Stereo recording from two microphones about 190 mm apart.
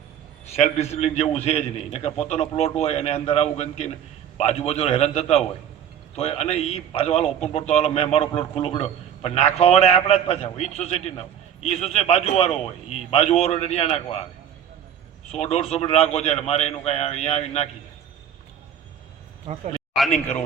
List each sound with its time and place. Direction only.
0.5 s a man's voice: 35° left (ahead or behind)
15.3 s a man's voice: 35° left (ahead or behind)